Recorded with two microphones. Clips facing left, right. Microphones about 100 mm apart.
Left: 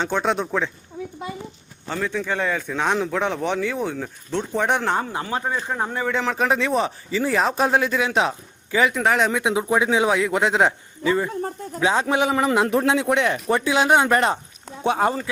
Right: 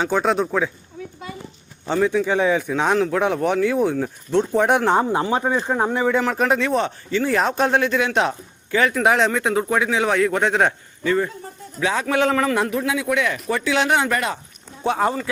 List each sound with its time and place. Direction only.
0.0 s speech: 5° right (ahead or behind)
1.9 s a man's voice: 15° right (ahead or behind)
4.9 s a man's voice: 20° right (ahead or behind)
6.1 s speech: 5° right (ahead or behind)
9.4 s a man's voice: 15° left (ahead or behind)
12.6 s speech: 35° left (ahead or behind)